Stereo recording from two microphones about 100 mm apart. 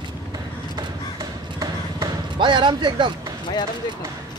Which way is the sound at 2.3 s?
50° right (ahead or behind).